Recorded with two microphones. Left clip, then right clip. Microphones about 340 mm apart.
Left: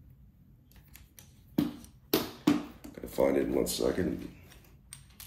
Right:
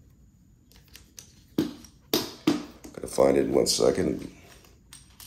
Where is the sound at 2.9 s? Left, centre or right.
Centre.